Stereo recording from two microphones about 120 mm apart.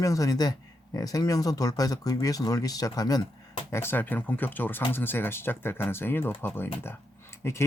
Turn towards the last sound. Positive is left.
turn(degrees=20)  # may be behind; listen again after turning